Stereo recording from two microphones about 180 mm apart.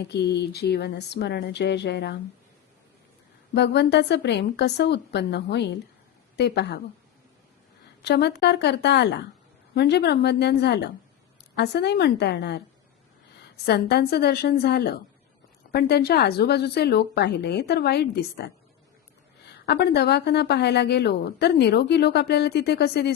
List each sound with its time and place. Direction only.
0.0 s a woman's voice: 70° left (ahead or behind)
3.5 s a woman's voice: 70° left (ahead or behind)
8.0 s a woman's voice: 65° left (ahead or behind)
13.7 s a woman's voice: 65° left (ahead or behind)
19.6 s a woman's voice: 65° left (ahead or behind)